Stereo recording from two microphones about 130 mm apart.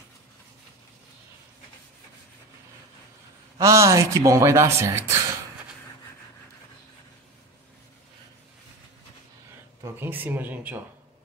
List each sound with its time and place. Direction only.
3.5 s speech: 25° right (ahead or behind)
9.8 s speech: 15° right (ahead or behind)